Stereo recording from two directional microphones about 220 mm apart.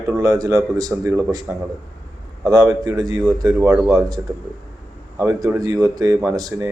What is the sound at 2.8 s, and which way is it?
Speech, 15° right (ahead or behind).